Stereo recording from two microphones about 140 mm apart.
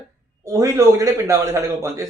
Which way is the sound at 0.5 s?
20° right (ahead or behind).